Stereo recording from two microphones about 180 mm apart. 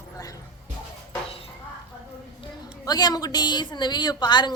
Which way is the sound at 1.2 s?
30° left (ahead or behind).